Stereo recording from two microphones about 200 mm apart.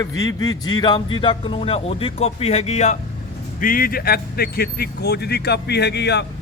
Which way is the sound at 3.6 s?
45° left (ahead or behind).